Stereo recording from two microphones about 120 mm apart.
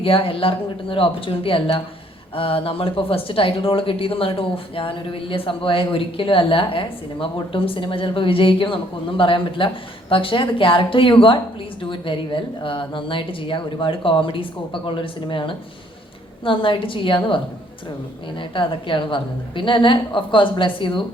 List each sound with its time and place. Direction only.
0.0 s speech: 50° left (ahead or behind)